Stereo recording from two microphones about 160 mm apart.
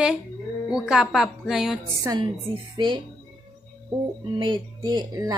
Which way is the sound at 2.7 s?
30° right (ahead or behind).